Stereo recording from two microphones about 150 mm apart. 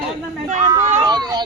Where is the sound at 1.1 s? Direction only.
25° right (ahead or behind).